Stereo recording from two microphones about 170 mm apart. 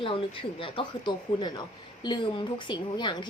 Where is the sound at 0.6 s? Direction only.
30° left (ahead or behind).